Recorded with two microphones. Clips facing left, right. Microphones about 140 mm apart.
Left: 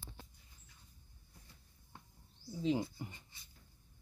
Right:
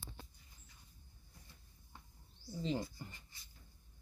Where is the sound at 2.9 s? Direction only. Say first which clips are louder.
Left 4 dB; 20° left (ahead or behind).